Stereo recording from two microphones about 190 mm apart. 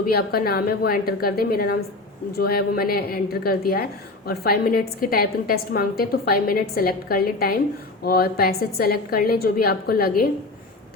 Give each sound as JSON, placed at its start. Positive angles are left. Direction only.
{"t": 0.1, "sound": "a woman's voice", "side_deg": 55}